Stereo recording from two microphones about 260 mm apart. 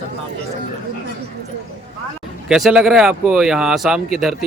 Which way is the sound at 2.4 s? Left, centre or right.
Centre.